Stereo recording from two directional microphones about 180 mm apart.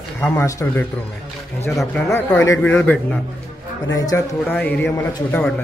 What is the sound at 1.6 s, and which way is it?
Speech, centre (ahead or behind).